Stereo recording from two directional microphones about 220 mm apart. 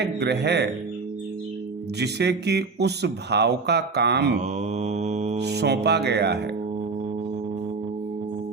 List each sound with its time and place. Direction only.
0.0 s speech: 50° right (ahead or behind)
2.0 s speech: 50° right (ahead or behind)
4.4 s mantra: 30° right (ahead or behind)
5.4 s speech: 50° right (ahead or behind)